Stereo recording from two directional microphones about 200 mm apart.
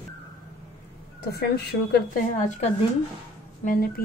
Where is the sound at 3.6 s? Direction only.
45° left (ahead or behind).